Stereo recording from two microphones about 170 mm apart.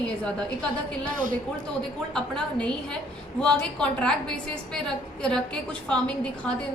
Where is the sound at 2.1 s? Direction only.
5° left (ahead or behind).